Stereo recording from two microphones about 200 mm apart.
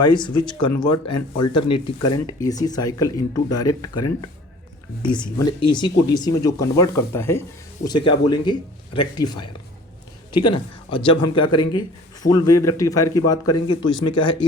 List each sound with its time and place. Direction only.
0.1 s speech: 20° left (ahead or behind)
5.0 s speech: 20° left (ahead or behind)
7.9 s a man's voice: 25° left (ahead or behind)